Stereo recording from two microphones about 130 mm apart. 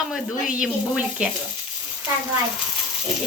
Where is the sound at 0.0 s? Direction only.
5° right (ahead or behind).